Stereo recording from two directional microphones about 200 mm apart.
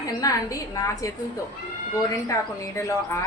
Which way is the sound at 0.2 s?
15° left (ahead or behind).